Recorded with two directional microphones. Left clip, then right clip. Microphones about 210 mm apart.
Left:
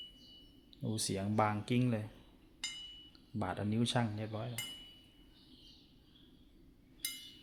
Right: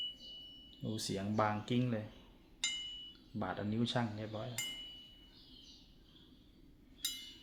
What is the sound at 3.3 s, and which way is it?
Speech, 25° left (ahead or behind).